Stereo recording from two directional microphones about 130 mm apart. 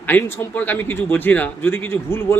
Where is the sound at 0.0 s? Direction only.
15° left (ahead or behind).